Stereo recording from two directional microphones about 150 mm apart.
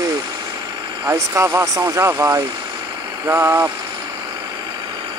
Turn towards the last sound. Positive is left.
turn(degrees=-15)  # may be behind; listen again after turning